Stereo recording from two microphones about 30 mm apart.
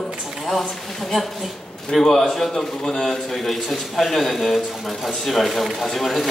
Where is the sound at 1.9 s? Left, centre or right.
Centre.